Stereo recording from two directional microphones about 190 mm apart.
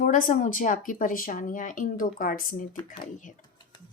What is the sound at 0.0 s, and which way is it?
Speech, 45° left (ahead or behind).